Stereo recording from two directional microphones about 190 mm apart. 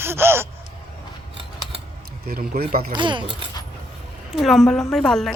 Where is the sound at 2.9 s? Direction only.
25° right (ahead or behind).